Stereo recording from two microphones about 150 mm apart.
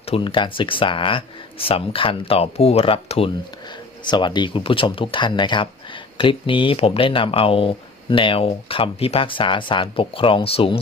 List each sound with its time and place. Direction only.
0.1 s speech: 35° left (ahead or behind)